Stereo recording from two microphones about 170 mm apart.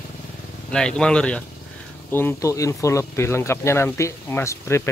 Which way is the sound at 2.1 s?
15° left (ahead or behind).